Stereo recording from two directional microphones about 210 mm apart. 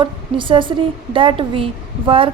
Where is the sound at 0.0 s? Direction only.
25° right (ahead or behind).